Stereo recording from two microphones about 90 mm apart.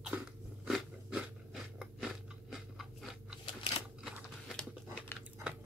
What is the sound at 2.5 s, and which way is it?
Crunch, centre (ahead or behind).